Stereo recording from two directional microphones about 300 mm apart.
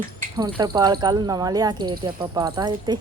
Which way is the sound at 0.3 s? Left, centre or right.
Centre.